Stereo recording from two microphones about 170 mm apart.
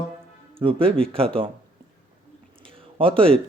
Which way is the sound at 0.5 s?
30° right (ahead or behind).